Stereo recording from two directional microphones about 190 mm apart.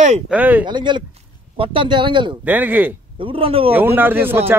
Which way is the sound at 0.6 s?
25° right (ahead or behind).